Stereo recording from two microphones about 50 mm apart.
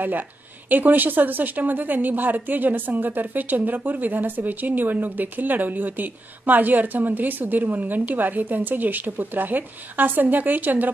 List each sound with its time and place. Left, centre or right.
0.7 s a woman's voice: right